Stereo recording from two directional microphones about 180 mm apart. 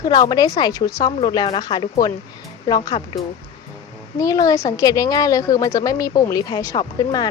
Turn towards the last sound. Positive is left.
turn(degrees=20)  # may be behind; listen again after turning